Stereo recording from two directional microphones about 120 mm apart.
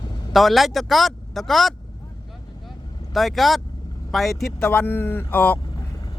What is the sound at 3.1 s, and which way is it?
A man's voice, centre (ahead or behind).